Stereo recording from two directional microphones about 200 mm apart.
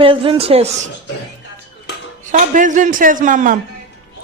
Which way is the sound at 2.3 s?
40° right (ahead or behind).